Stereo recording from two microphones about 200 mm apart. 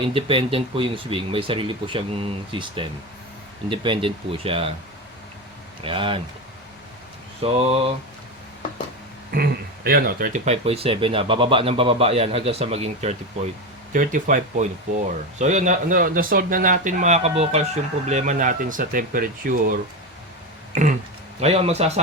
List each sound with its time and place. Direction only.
0.1 s speech: 25° right (ahead or behind)
5.8 s speech: 25° right (ahead or behind)
7.4 s speech: 30° right (ahead or behind)
9.3 s a man's voice: 50° right (ahead or behind)
21.4 s a man's voice: 30° right (ahead or behind)